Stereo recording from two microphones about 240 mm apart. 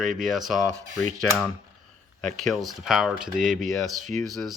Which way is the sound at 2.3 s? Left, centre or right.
Centre.